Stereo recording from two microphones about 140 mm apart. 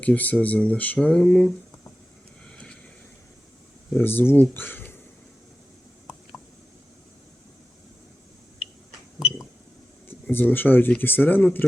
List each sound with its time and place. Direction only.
0.0 s speech: 10° left (ahead or behind)
2.5 s vehicle: 5° left (ahead or behind)
3.9 s speech: 15° left (ahead or behind)
9.1 s a sound: 25° left (ahead or behind)
10.1 s speech: 15° left (ahead or behind)